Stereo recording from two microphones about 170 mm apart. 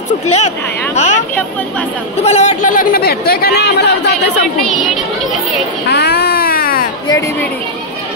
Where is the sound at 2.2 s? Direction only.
40° left (ahead or behind); by 4.1 s 70° left (ahead or behind).